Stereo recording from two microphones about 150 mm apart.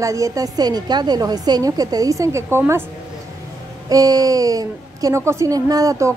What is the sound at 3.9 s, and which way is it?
A woman's voice, 25° right (ahead or behind).